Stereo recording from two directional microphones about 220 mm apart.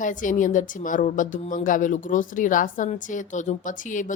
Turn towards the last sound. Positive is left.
turn(degrees=35)  # may be behind; listen again after turning